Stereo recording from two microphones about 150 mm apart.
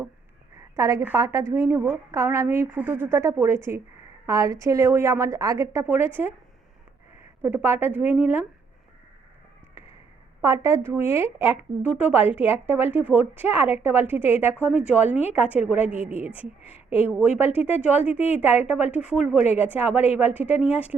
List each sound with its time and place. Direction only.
0.8 s a woman's voice: 20° right (ahead or behind)
7.4 s a woman's voice: 15° right (ahead or behind)
10.4 s a woman's voice: 20° right (ahead or behind)